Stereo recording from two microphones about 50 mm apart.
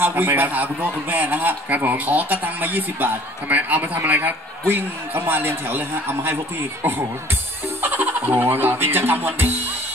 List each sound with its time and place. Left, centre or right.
0.0 s a man's voice: right
7.8 s fowl: right